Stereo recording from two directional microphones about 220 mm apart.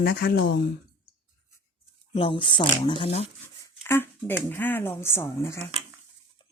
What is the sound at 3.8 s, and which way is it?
Speech, 10° left (ahead or behind).